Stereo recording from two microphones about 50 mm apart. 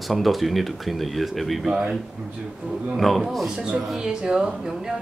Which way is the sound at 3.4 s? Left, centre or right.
Centre.